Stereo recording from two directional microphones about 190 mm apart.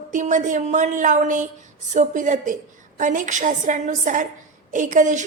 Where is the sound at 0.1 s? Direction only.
40° right (ahead or behind).